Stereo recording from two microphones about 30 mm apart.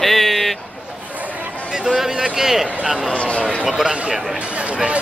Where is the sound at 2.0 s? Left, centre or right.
Centre.